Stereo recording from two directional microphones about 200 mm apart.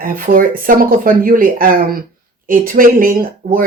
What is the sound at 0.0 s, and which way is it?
Speech, 45° right (ahead or behind).